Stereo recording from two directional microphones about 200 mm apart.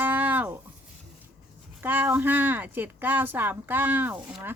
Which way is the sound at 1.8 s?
10° right (ahead or behind).